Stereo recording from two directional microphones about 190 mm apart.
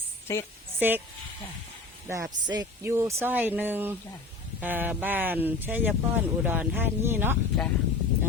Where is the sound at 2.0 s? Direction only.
15° right (ahead or behind).